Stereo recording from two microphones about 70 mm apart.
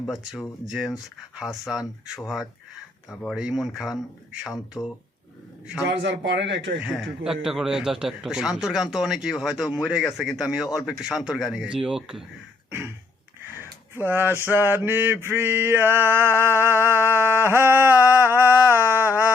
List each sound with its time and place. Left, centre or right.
0.0 s a man's voice: centre
6.7 s a man's voice: centre
13.9 s mantra: right
18.3 s a sound: right